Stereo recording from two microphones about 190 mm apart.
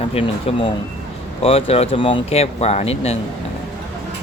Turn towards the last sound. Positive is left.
turn(degrees=35)  # may be behind; listen again after turning